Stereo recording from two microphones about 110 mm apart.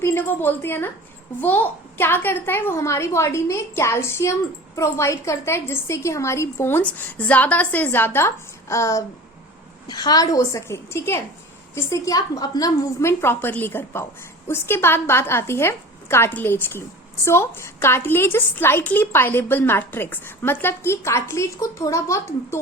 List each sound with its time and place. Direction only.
0.0 s a woman's voice: 20° left (ahead or behind)